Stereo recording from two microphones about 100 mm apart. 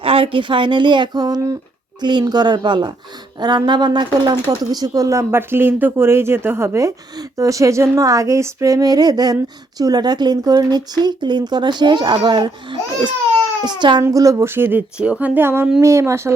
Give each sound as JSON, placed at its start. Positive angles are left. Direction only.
{"t": 0.0, "sound": "speech", "side_deg": -70}
{"t": 14.0, "sound": "speech", "side_deg": -35}